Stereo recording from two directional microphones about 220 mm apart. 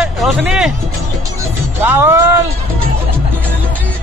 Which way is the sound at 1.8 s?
10° right (ahead or behind).